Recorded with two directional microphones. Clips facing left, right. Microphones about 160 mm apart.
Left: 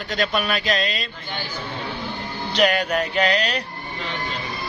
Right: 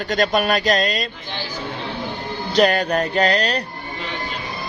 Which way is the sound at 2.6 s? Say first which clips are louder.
Right 3 dB; 40° right (ahead or behind).